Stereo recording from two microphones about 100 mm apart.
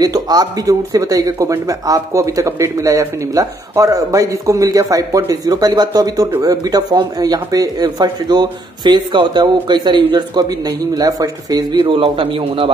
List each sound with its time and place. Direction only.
0.0 s speech: 40° right (ahead or behind)
11.8 s a man's voice: 60° right (ahead or behind)